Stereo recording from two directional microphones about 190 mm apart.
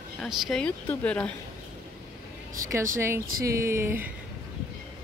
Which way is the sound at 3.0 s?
15° right (ahead or behind).